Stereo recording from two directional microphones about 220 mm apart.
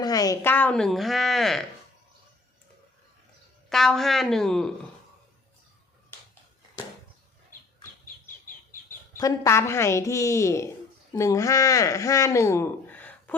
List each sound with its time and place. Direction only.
0.0 s a woman's voice: 15° left (ahead or behind); by 1.6 s centre (ahead or behind)
3.7 s a woman's voice: centre (ahead or behind)
8.0 s chicken: 40° left (ahead or behind)
8.9 s a woman's voice: 15° left (ahead or behind)